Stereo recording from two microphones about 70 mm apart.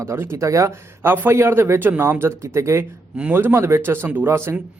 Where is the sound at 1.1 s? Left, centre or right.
Right.